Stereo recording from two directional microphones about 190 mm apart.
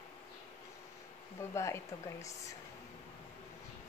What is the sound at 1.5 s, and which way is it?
Speech, 15° left (ahead or behind).